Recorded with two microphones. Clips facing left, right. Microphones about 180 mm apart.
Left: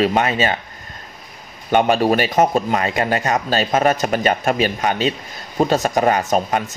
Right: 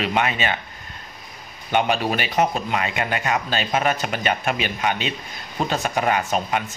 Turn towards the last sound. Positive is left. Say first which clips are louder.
# left 4 dB
turn(degrees=40)  # may be behind; listen again after turning